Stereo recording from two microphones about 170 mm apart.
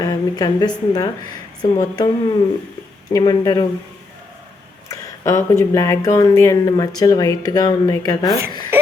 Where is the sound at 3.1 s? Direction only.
20° left (ahead or behind).